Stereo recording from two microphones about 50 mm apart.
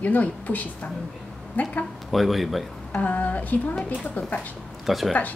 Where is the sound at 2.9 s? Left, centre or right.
Left.